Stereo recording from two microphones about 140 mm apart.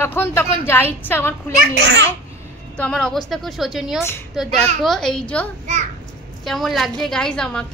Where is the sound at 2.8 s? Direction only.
5° left (ahead or behind).